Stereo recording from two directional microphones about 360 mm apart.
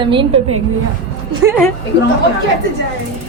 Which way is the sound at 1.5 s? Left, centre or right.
Centre.